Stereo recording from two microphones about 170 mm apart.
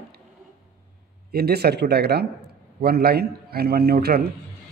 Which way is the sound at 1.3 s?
65° right (ahead or behind).